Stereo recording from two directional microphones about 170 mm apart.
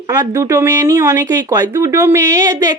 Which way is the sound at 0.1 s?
20° right (ahead or behind).